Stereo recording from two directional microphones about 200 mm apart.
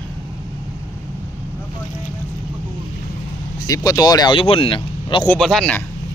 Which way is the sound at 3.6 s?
20° left (ahead or behind).